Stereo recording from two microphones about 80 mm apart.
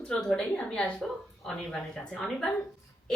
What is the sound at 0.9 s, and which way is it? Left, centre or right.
Speech, centre.